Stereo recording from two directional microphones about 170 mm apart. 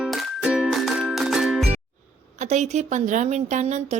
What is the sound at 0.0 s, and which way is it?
Music, 5° right (ahead or behind).